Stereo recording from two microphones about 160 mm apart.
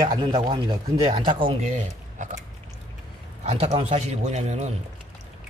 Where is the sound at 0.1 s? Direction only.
30° right (ahead or behind).